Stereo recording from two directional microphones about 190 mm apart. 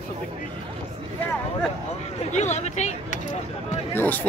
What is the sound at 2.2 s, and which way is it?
Speech, 40° left (ahead or behind).